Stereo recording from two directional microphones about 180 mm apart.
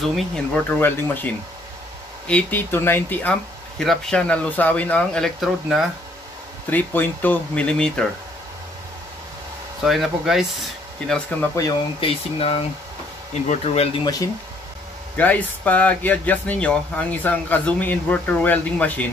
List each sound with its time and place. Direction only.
0.0 s speech: 5° left (ahead or behind)
6.7 s speech: 10° left (ahead or behind)
9.8 s speech: centre (ahead or behind)
11.3 s speech: 10° left (ahead or behind)
12.0 s speech: 30° left (ahead or behind)
14.0 s speech: 20° left (ahead or behind)
15.1 s speech: 10° left (ahead or behind)